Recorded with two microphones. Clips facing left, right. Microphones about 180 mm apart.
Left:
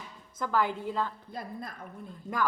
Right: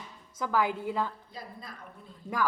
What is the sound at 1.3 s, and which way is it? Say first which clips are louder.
Speech: left 5 dB; 50° left (ahead or behind).